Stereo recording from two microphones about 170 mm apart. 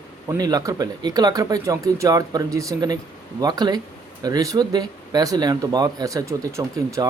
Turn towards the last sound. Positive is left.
turn(degrees=-15)  # may be behind; listen again after turning